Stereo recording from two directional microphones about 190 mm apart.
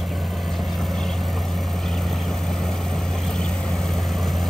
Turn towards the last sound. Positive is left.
turn(degrees=0)  # may be behind; listen again after turning